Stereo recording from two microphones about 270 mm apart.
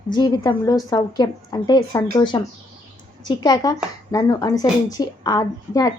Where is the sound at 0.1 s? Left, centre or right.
Centre.